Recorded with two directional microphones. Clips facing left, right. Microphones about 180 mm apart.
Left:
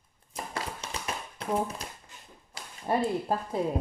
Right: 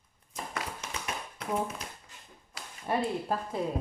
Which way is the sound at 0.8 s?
30° left (ahead or behind).